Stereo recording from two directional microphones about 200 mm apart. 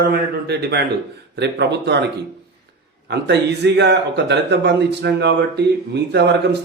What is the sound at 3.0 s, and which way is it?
Speech, 60° right (ahead or behind).